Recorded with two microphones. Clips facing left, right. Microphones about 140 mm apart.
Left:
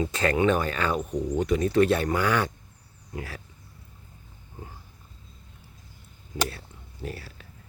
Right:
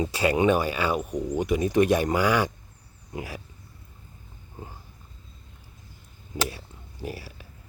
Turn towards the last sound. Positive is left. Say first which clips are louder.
# right 1 dB
turn(degrees=-15)  # may be behind; listen again after turning